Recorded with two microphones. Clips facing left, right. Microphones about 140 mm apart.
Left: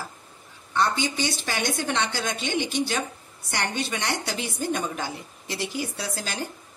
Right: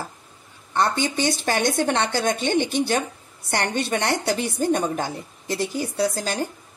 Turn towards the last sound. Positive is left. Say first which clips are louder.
# right 9 dB
turn(degrees=-40)  # may be behind; listen again after turning